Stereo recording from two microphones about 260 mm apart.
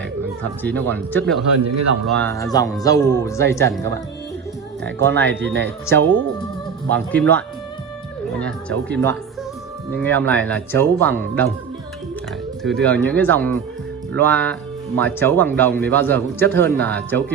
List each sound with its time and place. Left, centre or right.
0.6 s speech: centre
4.8 s speech: centre
12.6 s speech: centre